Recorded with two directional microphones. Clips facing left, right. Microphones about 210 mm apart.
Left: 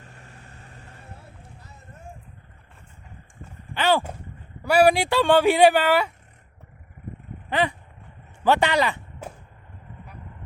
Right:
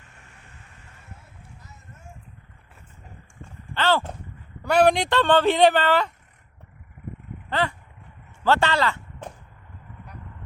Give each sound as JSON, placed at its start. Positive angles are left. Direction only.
{"t": 0.0, "sound": "vehicle", "side_deg": 35}
{"t": 3.8, "sound": "a sound", "side_deg": 15}
{"t": 4.6, "sound": "speech", "side_deg": 10}
{"t": 7.5, "sound": "speech", "side_deg": 15}